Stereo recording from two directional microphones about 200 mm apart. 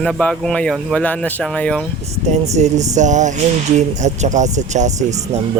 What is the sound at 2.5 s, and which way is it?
Speech, 35° right (ahead or behind).